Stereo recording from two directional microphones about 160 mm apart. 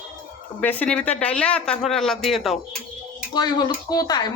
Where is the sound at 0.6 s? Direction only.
10° left (ahead or behind).